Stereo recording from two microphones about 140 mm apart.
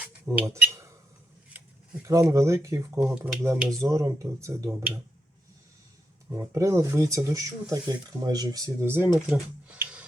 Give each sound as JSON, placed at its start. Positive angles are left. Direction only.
{"t": 0.3, "sound": "speech", "side_deg": -25}
{"t": 0.7, "sound": "a sound", "side_deg": -20}
{"t": 2.0, "sound": "speech", "side_deg": -20}
{"t": 6.3, "sound": "speech", "side_deg": -20}